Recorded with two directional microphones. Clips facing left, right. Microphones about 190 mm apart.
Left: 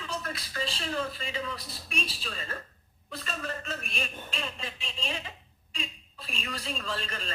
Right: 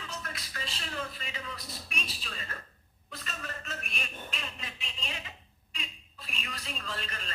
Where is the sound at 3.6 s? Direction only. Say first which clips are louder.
Left 5 dB; 30° left (ahead or behind).